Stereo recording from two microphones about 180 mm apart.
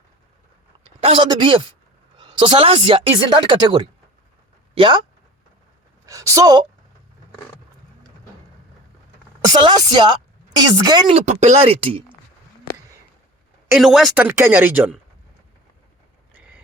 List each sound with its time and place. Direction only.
1.0 s speech: 25° right (ahead or behind)
6.1 s speech: 20° right (ahead or behind)
9.4 s speech: 25° right (ahead or behind)
11.1 s speech: 40° right (ahead or behind)
13.7 s speech: centre (ahead or behind)